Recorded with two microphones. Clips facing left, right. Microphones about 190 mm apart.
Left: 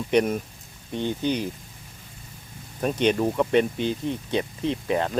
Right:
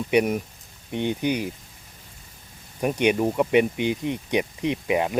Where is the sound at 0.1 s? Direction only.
10° right (ahead or behind).